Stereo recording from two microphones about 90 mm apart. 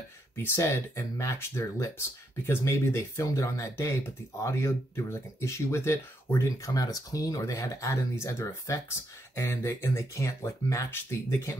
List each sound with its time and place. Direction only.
0.4 s speech: 30° left (ahead or behind)